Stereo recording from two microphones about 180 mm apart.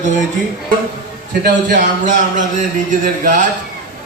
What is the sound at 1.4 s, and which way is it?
Speech, 45° right (ahead or behind).